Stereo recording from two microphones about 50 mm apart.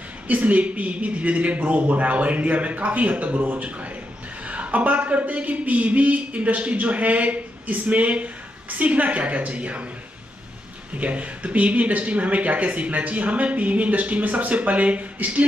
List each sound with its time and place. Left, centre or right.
0.3 s a man's voice: right
3.3 s a man's voice: right
4.5 s a man's voice: right
11.0 s a man's voice: right